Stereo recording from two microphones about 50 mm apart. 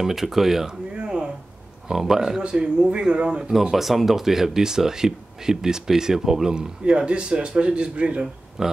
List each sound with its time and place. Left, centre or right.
0.0 s speech: centre
0.9 s a sound: centre
1.9 s speech: centre
3.7 s speech: centre; by 8.3 s right
8.6 s speech: centre